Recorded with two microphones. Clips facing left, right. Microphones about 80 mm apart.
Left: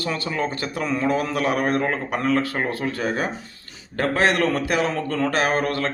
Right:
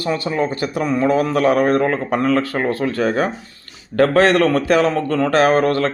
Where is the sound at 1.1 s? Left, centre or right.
Right.